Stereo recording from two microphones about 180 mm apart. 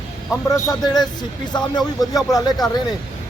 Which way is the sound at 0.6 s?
25° left (ahead or behind).